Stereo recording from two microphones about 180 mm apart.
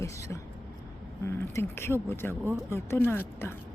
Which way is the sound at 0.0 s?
15° left (ahead or behind).